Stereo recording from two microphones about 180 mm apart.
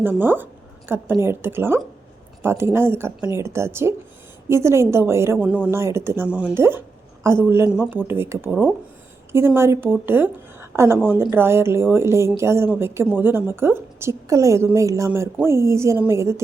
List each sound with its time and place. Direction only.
0.0 s a woman's voice: 10° right (ahead or behind)